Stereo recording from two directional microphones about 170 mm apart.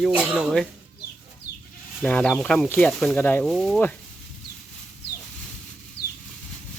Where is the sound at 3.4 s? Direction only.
Centre (ahead or behind).